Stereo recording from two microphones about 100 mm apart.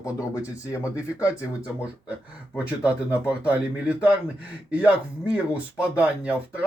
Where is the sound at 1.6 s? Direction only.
15° right (ahead or behind).